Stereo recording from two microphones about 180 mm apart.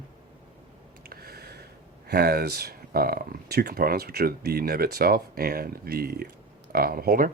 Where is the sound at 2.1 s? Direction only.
60° right (ahead or behind).